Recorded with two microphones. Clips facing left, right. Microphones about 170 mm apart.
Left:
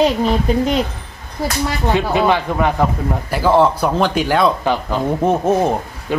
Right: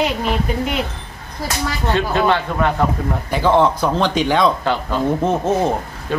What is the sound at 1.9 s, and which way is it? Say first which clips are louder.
Speech: left 1 dB; 15° left (ahead or behind).